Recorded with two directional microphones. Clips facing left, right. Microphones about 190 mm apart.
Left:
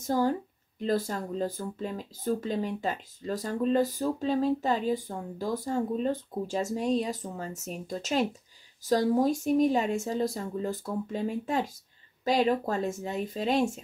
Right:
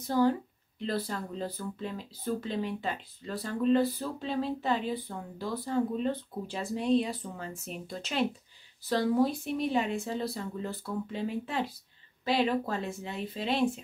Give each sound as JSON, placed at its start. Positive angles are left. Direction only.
{"t": 0.0, "sound": "speech", "side_deg": 45}